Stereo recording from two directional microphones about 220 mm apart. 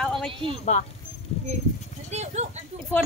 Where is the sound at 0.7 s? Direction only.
30° left (ahead or behind).